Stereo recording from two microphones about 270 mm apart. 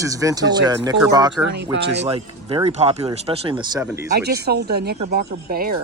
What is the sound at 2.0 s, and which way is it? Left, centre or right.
Speech, right.